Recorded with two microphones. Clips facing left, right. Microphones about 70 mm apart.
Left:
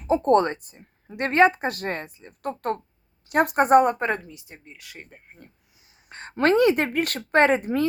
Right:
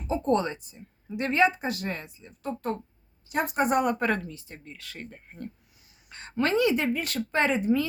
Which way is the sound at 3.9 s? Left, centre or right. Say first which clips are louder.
Left 1 dB; left.